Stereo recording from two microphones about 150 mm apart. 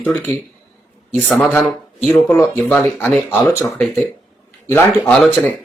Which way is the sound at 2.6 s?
5° left (ahead or behind).